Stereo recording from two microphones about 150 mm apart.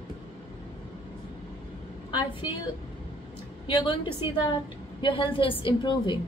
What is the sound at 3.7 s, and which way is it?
A woman's voice, 35° left (ahead or behind).